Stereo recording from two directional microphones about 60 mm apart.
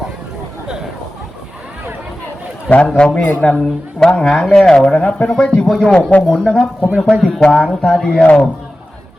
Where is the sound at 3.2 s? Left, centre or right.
Left.